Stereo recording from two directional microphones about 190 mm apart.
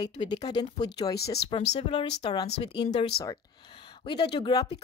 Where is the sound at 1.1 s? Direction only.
55° left (ahead or behind).